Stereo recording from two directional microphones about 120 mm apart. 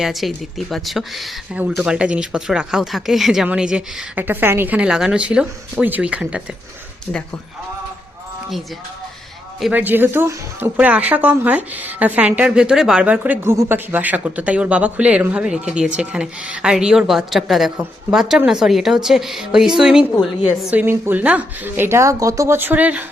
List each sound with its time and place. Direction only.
0.0 s a woman's voice: centre (ahead or behind)
9.7 s a woman's voice: 15° right (ahead or behind)
20.8 s a woman's voice: 20° right (ahead or behind)